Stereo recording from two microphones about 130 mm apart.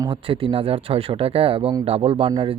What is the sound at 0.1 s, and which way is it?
Speech, 45° right (ahead or behind).